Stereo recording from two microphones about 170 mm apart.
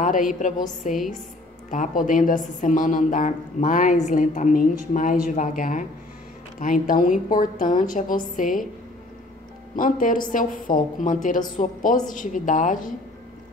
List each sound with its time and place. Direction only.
0.0 s a woman's voice: 50° left (ahead or behind)
1.7 s a woman's voice: 50° left (ahead or behind)
9.8 s a woman's voice: 55° left (ahead or behind)